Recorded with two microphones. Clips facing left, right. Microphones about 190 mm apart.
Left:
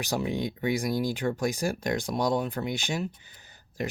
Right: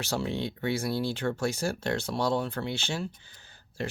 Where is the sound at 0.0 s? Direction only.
15° left (ahead or behind).